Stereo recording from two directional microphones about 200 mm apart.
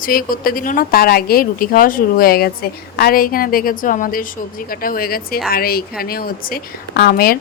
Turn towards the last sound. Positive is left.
turn(degrees=50)  # may be behind; listen again after turning